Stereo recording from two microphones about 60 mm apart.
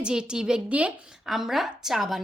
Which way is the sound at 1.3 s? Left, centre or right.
Centre.